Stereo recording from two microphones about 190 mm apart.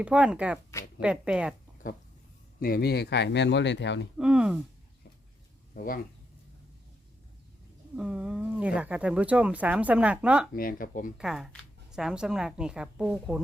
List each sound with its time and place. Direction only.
0.0 s a woman's voice: 5° right (ahead or behind)
2.6 s speech: 50° left (ahead or behind); by 4.0 s 70° left (ahead or behind)
4.2 s speech: 5° right (ahead or behind)
5.7 s speech: 50° left (ahead or behind)
7.9 s speech: 5° right (ahead or behind)
10.5 s speech: 50° left (ahead or behind)
11.2 s a woman's voice: 5° right (ahead or behind)